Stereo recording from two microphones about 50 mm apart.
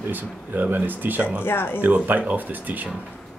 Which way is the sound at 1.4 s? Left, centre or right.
Left.